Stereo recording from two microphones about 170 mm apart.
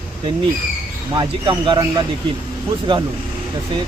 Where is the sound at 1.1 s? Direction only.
25° right (ahead or behind).